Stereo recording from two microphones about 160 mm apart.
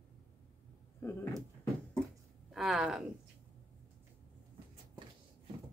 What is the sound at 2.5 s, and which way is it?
Speech, centre (ahead or behind).